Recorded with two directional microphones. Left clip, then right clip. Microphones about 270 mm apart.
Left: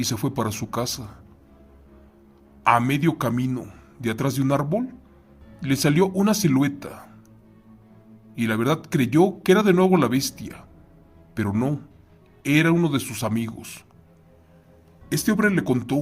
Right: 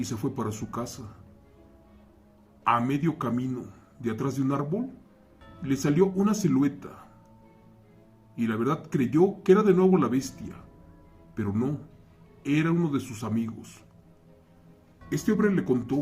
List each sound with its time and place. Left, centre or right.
0.0 s speech: left
2.6 s speech: left
8.4 s speech: left
15.1 s speech: left